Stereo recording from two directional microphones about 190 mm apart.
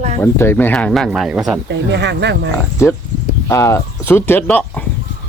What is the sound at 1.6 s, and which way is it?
Speech, 65° right (ahead or behind).